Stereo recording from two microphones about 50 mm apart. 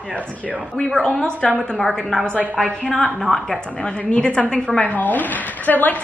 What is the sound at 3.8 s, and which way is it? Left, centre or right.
A woman's voice, centre.